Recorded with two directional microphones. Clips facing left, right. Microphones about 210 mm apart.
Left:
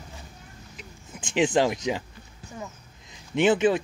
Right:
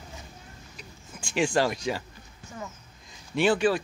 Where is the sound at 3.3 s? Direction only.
20° left (ahead or behind).